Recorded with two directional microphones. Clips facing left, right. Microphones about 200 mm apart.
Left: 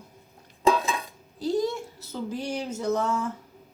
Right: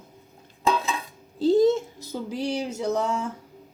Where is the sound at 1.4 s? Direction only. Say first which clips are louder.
Right 8 dB; 25° right (ahead or behind).